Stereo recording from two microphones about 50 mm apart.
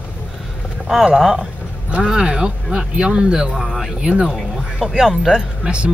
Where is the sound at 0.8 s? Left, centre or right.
Centre.